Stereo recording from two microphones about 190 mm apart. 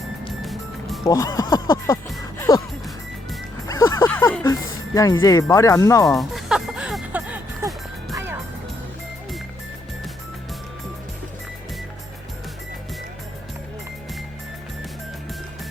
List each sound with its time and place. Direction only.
1.0 s speech: 15° left (ahead or behind)
2.5 s music: 20° left (ahead or behind)
3.7 s music: 15° left (ahead or behind)
5.2 s speech: 20° left (ahead or behind)
6.1 s music: centre (ahead or behind)